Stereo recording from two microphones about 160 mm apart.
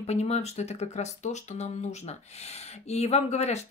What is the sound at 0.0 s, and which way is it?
Speech, 40° left (ahead or behind).